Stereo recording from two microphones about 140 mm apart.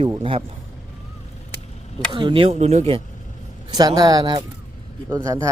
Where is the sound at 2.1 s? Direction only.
35° right (ahead or behind).